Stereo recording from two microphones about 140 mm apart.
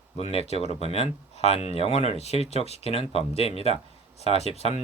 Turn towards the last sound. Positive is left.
turn(degrees=45)  # may be behind; listen again after turning